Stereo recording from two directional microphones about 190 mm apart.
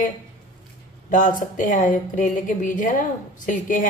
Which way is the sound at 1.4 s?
40° left (ahead or behind).